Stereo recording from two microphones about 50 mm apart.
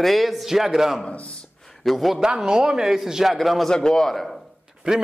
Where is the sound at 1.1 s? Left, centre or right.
Left.